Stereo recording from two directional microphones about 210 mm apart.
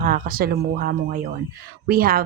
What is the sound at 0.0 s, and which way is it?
Speech, 40° right (ahead or behind).